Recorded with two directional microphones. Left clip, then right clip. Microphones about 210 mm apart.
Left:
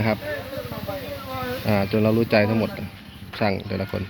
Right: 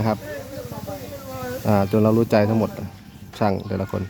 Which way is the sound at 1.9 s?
15° right (ahead or behind).